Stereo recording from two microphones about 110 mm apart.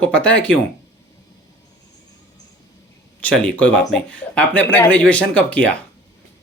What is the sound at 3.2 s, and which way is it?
Speech, 10° left (ahead or behind).